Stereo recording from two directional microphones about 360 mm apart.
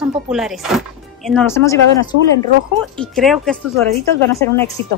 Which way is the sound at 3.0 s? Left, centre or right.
Centre.